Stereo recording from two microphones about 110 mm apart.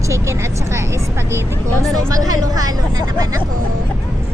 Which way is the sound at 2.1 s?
35° right (ahead or behind).